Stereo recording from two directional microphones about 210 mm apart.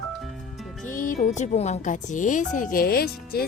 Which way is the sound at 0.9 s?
40° left (ahead or behind).